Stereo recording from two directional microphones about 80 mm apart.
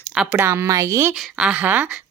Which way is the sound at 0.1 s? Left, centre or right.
Centre.